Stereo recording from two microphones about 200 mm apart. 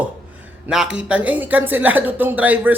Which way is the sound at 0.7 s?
5° right (ahead or behind).